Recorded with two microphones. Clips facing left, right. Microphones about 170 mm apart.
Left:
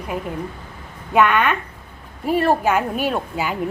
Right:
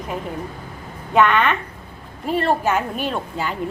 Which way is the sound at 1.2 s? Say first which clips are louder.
Even; 10° left (ahead or behind).